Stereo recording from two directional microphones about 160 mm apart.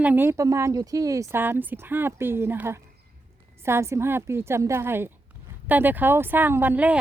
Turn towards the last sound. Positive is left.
turn(degrees=-10)  # may be behind; listen again after turning